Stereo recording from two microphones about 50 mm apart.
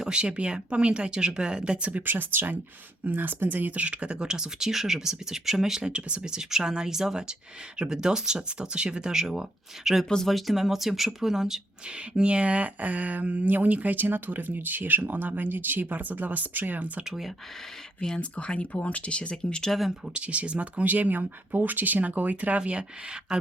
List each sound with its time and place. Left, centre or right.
0.0 s speech: centre
5.8 s speech: right
11.9 s speech: right
17.1 s speech: centre
18.1 s speech: left
20.1 s speech: right